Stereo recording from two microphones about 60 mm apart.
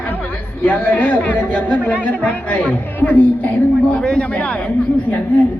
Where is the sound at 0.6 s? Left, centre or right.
Left.